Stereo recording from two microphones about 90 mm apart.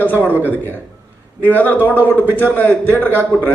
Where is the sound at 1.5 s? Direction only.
20° left (ahead or behind).